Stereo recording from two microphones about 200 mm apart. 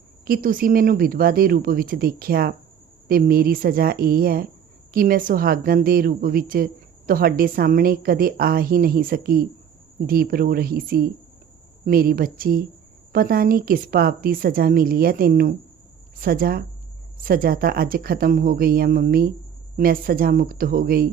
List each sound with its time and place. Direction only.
0.3 s a woman's voice: 45° right (ahead or behind)